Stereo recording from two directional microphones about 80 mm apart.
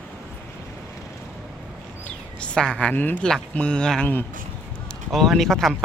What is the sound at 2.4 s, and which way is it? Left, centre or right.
Speech, centre.